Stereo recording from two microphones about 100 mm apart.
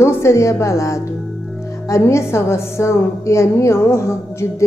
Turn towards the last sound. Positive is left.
turn(degrees=25)  # may be behind; listen again after turning